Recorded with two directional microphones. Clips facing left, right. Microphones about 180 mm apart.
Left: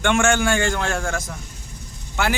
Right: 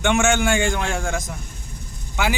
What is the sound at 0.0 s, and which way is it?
A man's voice, 15° right (ahead or behind).